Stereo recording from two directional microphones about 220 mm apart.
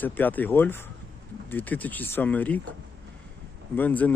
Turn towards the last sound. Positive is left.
turn(degrees=5)  # may be behind; listen again after turning